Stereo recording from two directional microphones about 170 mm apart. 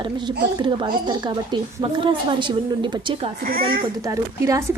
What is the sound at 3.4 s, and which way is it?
Speech, 60° right (ahead or behind).